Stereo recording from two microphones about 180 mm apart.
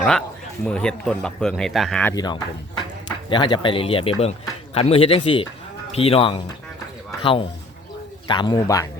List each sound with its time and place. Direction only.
0.0 s speech: 5° left (ahead or behind)
2.1 s speech: 25° left (ahead or behind)